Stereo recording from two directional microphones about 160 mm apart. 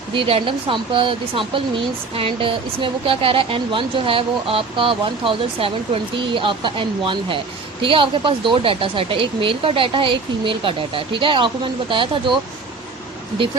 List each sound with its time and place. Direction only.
0.1 s speech: 35° right (ahead or behind)